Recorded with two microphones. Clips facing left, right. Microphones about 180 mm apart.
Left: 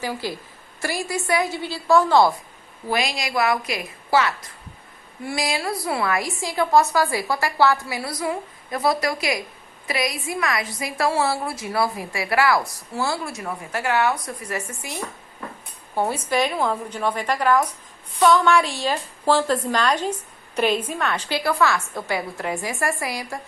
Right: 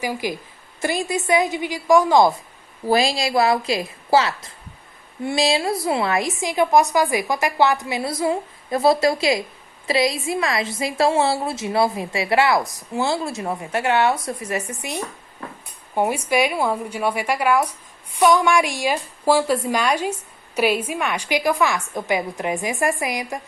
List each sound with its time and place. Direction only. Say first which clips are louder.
0.0 s a woman's voice: right 3 dB; 15° right (ahead or behind)
2.8 s a woman's voice: right 6 dB; 30° right (ahead or behind)